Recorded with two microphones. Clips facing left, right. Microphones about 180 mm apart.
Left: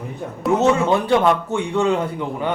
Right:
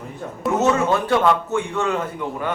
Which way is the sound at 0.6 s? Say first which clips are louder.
Left 1 dB; 15° left (ahead or behind).